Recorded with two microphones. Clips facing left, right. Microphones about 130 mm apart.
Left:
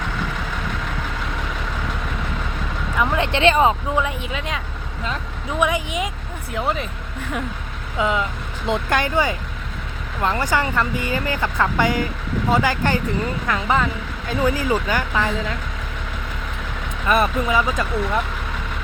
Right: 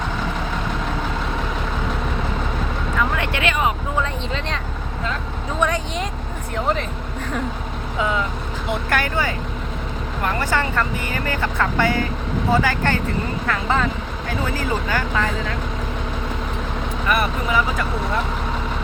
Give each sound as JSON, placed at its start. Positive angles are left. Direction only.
{"t": 3.0, "sound": "a sound", "side_deg": 25}
{"t": 4.0, "sound": "speech", "side_deg": 10}
{"t": 7.9, "sound": "speech", "side_deg": 20}
{"t": 17.1, "sound": "speech", "side_deg": 25}